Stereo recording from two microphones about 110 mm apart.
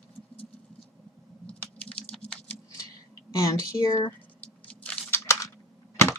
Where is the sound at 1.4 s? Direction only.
10° left (ahead or behind).